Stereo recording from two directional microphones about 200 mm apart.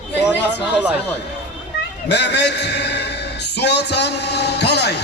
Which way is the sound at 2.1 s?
60° left (ahead or behind).